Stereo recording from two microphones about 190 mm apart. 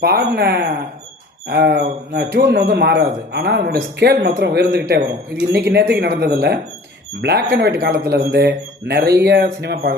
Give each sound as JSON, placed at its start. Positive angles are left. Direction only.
{"t": 0.0, "sound": "speech", "side_deg": -55}